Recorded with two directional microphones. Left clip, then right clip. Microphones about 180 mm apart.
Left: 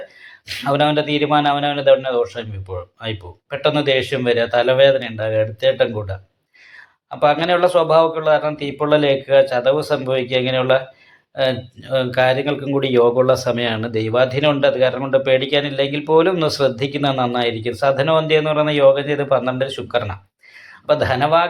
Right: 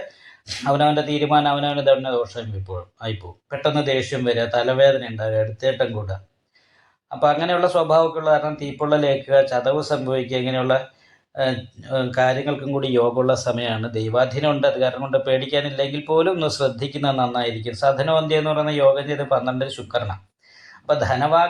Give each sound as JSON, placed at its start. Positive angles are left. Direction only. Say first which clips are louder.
{"t": 0.4, "sound": "speech", "louder": "left 1 dB", "side_deg": 25}
{"t": 7.2, "sound": "speech", "louder": "left 3 dB", "side_deg": 25}